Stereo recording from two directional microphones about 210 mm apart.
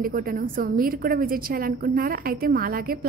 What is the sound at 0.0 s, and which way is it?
A woman's voice, 45° right (ahead or behind).